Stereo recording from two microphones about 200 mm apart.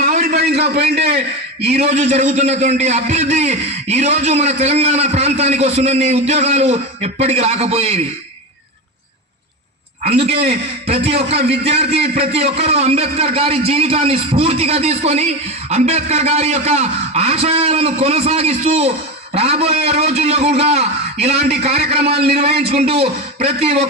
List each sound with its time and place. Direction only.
0.0 s a sound: 45° right (ahead or behind)
0.6 s a man's voice: 30° right (ahead or behind)
10.0 s a man's voice: 30° right (ahead or behind)